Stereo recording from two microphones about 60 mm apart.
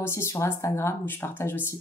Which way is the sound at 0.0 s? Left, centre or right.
Left.